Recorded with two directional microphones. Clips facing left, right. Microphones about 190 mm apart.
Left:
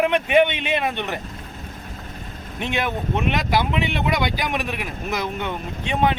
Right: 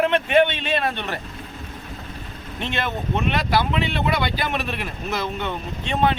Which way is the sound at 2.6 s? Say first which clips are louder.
Left 2 dB; 15° left (ahead or behind).